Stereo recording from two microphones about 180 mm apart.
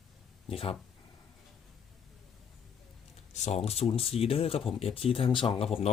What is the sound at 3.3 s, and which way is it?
Speech, 40° left (ahead or behind).